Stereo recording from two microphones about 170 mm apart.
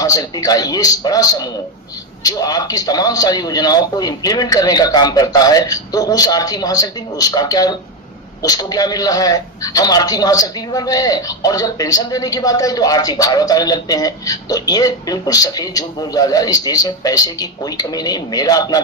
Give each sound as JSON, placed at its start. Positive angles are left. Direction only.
{"t": 0.0, "sound": "a man's voice", "side_deg": 20}